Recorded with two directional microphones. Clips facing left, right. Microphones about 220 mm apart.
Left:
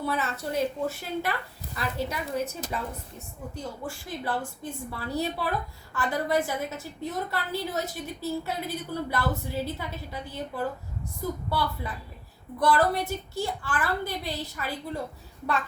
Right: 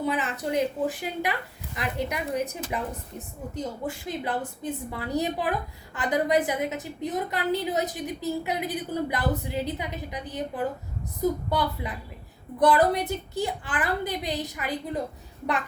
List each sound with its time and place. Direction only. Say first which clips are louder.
0.0 s a woman's voice: right 2 dB; 15° right (ahead or behind)